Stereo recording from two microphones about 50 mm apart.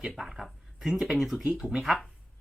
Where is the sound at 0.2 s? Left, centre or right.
Centre.